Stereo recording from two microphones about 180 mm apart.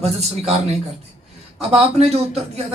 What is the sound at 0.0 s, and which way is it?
A man's voice, 35° right (ahead or behind).